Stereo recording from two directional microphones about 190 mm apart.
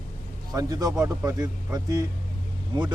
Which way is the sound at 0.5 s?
20° right (ahead or behind).